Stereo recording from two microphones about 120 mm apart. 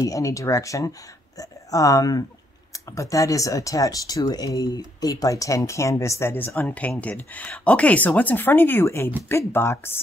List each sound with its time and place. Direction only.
0.0 s speech: 30° left (ahead or behind)